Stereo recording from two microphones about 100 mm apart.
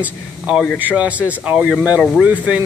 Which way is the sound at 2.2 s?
15° right (ahead or behind).